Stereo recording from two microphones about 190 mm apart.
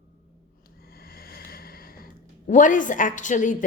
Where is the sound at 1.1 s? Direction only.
50° left (ahead or behind).